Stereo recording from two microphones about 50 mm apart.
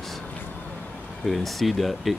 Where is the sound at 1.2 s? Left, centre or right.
Centre.